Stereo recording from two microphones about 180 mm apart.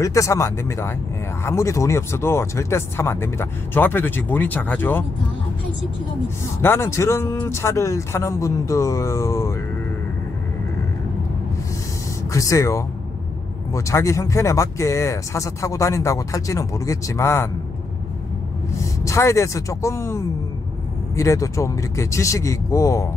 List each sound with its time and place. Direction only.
0.0 s speech: 15° left (ahead or behind)
6.6 s speech: 15° left (ahead or behind)
12.3 s speech: 15° left (ahead or behind)
19.0 s speech: 15° left (ahead or behind)